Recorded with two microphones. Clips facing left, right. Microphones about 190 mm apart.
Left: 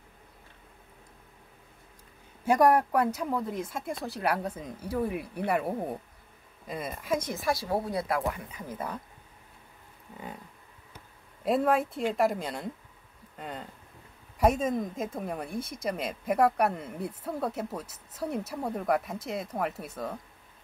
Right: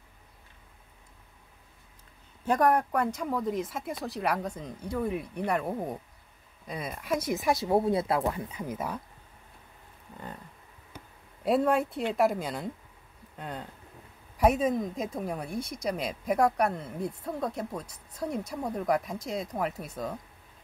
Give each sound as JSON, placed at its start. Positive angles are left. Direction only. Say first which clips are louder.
{"t": 2.4, "sound": "speech", "louder": "left 2 dB", "side_deg": 10}
{"t": 7.2, "sound": "speech", "louder": "right 3 dB", "side_deg": -20}
{"t": 8.6, "sound": "speech", "louder": "even", "side_deg": -5}
{"t": 11.4, "sound": "speech", "louder": "right 1 dB", "side_deg": 0}